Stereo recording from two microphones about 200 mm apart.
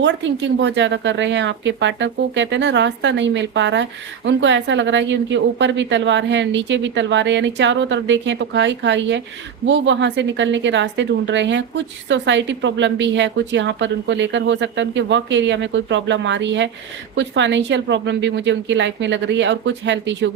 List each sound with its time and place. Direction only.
0.0 s a woman's voice: 65° right (ahead or behind)